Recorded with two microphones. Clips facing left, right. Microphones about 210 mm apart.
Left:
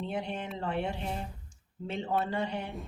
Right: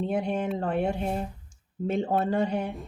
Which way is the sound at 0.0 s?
45° right (ahead or behind).